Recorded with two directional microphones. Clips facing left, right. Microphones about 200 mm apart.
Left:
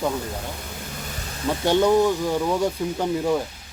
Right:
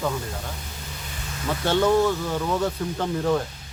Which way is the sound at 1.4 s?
20° left (ahead or behind).